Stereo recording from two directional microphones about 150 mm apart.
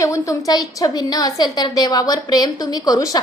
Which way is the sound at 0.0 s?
20° left (ahead or behind).